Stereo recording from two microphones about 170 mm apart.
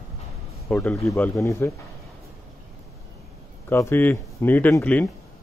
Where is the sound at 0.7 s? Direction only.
5° left (ahead or behind).